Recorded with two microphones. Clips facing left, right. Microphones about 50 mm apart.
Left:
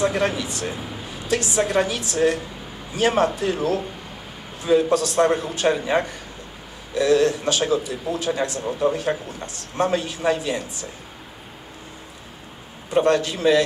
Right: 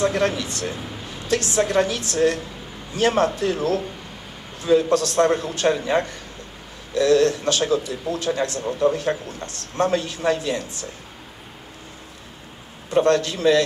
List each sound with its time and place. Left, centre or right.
0.0 s a man's voice: centre
12.9 s a man's voice: centre